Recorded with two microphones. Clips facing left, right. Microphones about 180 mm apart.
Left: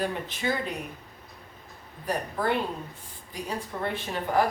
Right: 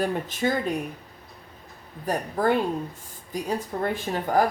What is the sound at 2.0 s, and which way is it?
A woman's voice, 45° right (ahead or behind).